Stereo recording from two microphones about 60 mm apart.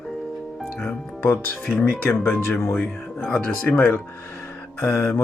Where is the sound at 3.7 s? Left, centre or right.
Left.